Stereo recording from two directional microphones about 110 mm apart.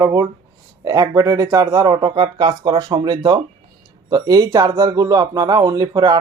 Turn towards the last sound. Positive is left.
turn(degrees=-35)  # may be behind; listen again after turning